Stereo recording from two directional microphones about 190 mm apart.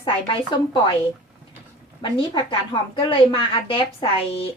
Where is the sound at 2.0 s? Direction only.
25° left (ahead or behind).